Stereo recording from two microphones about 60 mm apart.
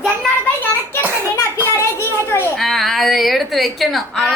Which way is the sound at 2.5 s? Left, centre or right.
Centre.